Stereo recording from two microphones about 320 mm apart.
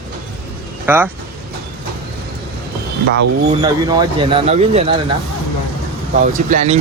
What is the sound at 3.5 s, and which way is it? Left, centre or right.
Speech, centre.